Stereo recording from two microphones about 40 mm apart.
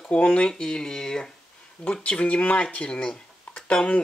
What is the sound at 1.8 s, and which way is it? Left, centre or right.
Speech, left.